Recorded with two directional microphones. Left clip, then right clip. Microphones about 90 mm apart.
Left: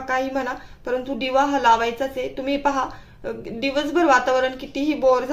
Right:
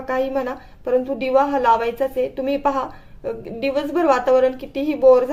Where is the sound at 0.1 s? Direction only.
35° right (ahead or behind).